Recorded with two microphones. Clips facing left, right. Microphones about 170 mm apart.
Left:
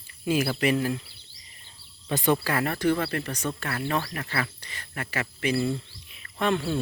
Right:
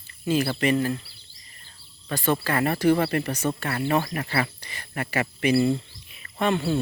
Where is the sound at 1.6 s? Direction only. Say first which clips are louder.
Left 1 dB; 20° left (ahead or behind).